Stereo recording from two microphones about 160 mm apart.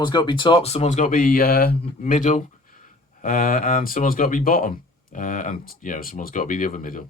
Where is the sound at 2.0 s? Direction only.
55° left (ahead or behind).